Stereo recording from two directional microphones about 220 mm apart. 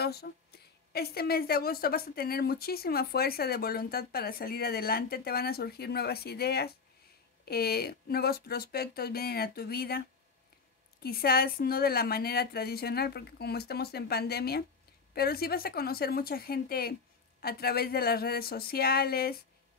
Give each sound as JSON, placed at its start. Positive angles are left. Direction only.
{"t": 0.0, "sound": "a woman's voice", "side_deg": 45}